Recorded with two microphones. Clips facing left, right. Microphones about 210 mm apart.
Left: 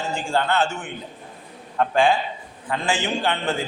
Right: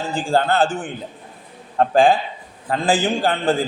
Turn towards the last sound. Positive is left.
turn(degrees=-35)  # may be behind; listen again after turning